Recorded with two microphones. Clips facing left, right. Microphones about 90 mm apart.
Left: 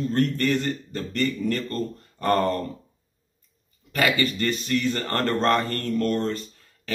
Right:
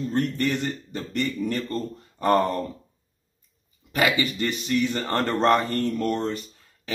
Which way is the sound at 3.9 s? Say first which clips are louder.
Even; 15° right (ahead or behind).